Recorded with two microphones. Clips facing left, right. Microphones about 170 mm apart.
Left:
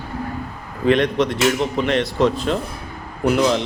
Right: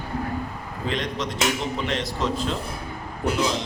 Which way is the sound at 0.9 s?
60° left (ahead or behind).